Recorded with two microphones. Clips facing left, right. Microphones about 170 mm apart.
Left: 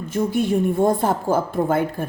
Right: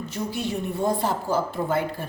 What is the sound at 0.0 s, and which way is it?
A woman's voice, 50° left (ahead or behind).